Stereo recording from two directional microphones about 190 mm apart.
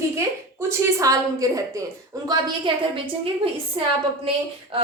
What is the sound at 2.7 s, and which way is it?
Speech, 25° right (ahead or behind).